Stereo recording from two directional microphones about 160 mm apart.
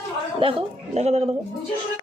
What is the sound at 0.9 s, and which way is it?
Speech, 40° right (ahead or behind).